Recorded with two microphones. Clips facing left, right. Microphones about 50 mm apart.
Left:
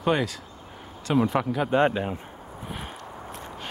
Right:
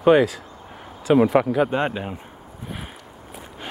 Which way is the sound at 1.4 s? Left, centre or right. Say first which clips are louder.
Right 7 dB; centre.